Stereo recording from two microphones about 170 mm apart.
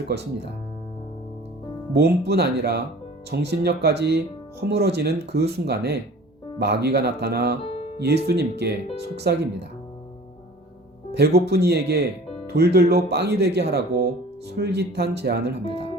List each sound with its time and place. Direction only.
1.9 s speech: 70° right (ahead or behind)
7.6 s music: 35° left (ahead or behind)
7.9 s speech: 70° right (ahead or behind)
11.1 s speech: 70° right (ahead or behind)